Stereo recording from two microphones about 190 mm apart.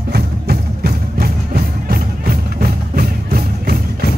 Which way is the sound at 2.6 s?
50° right (ahead or behind).